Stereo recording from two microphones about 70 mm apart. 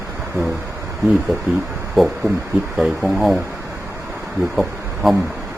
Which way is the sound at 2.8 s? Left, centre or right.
Centre.